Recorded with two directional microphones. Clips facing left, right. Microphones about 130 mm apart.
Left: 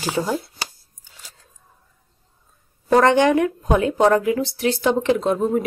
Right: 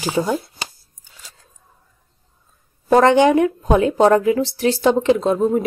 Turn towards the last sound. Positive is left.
turn(degrees=-25)  # may be behind; listen again after turning